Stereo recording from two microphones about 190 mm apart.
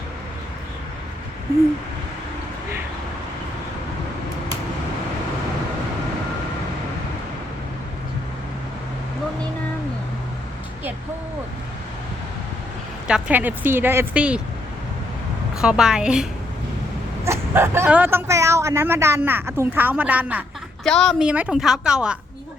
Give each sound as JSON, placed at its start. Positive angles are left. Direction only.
{"t": 13.1, "sound": "speech", "side_deg": -5}
{"t": 15.5, "sound": "a woman's voice", "side_deg": -5}
{"t": 17.2, "sound": "speech", "side_deg": -15}
{"t": 20.8, "sound": "a woman's voice", "side_deg": 5}